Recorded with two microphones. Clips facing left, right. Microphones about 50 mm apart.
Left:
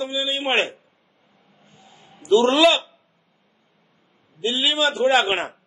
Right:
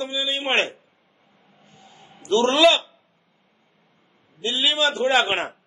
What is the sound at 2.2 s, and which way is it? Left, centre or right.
Speech, centre.